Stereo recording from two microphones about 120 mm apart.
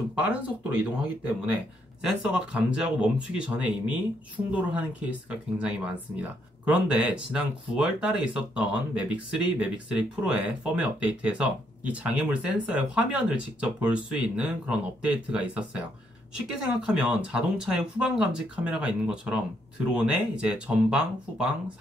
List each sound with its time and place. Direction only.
0.3 s speech: 15° right (ahead or behind)